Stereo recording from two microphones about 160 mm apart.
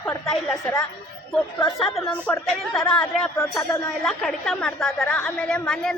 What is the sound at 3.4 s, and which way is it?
Speech, 20° left (ahead or behind).